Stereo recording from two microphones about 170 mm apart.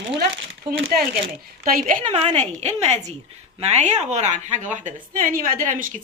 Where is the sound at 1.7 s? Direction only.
50° right (ahead or behind).